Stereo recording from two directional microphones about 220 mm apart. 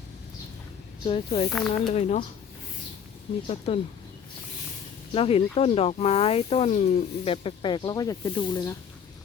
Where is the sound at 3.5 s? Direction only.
25° left (ahead or behind).